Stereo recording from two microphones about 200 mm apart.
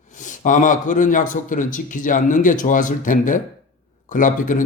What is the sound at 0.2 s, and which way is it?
A man's voice, 40° left (ahead or behind).